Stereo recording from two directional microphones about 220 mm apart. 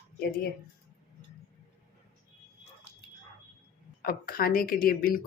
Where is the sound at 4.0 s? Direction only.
40° left (ahead or behind).